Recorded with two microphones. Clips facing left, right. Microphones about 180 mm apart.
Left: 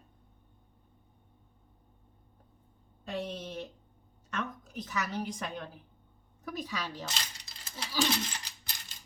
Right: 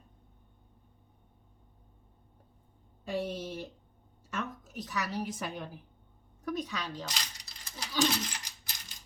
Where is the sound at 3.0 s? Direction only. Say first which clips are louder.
Right 3 dB; 10° right (ahead or behind).